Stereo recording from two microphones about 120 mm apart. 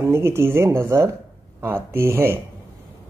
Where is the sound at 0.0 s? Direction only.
20° right (ahead or behind).